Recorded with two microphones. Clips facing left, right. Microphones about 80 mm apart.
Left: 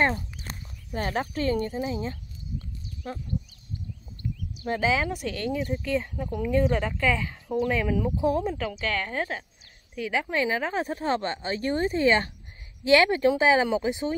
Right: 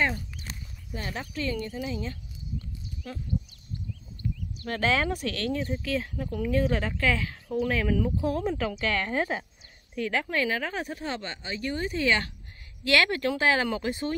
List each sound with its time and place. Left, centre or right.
0.0 s speech: left
4.6 s speech: centre
8.5 s speech: centre
9.9 s speech: centre